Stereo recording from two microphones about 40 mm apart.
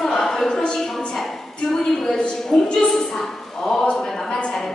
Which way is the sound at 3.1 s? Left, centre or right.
Centre.